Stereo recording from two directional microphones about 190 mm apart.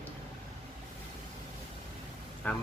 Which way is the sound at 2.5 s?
10° left (ahead or behind).